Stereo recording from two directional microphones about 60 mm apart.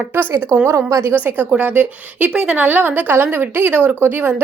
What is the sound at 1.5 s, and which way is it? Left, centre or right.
A woman's voice, right.